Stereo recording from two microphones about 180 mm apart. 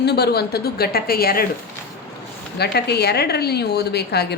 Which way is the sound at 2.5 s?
65° left (ahead or behind).